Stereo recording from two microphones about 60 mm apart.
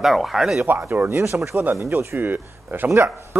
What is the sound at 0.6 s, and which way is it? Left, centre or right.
A man's voice, right.